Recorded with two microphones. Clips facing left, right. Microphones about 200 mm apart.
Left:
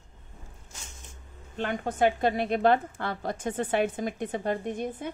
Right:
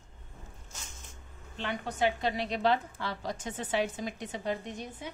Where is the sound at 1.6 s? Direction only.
50° left (ahead or behind).